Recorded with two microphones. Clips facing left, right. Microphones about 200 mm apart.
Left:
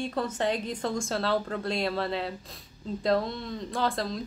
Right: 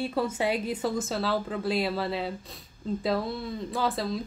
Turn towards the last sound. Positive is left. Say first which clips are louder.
# right 1 dB
turn(degrees=-5)  # may be behind; listen again after turning